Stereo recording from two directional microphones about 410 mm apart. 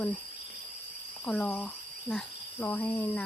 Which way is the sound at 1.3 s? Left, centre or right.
Centre.